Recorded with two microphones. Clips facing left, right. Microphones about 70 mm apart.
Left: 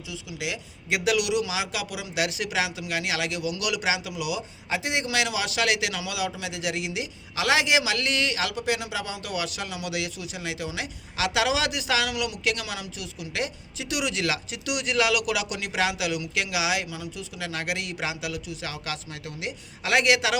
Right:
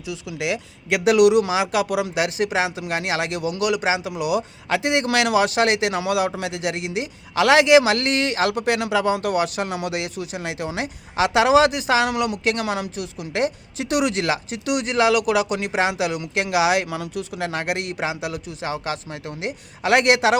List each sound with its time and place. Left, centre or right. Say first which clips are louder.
0.1 s speech: right 8 dB; right